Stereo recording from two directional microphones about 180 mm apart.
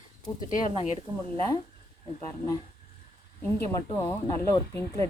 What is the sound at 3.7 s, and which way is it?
Speech, 20° left (ahead or behind).